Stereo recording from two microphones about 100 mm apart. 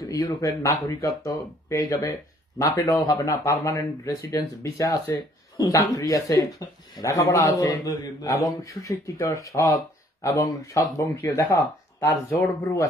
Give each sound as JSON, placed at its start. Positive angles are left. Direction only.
{"t": 0.1, "sound": "speech", "side_deg": 35}